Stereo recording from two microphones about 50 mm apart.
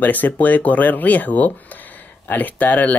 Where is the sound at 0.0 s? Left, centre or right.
Left.